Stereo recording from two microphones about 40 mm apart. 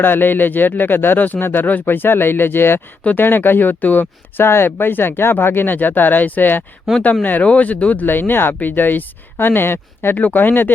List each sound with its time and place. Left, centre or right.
0.0 s speech: left
1.6 s speech: left
3.2 s speech: left
4.4 s speech: left
7.0 s speech: left
8.0 s speech: left
10.2 s speech: left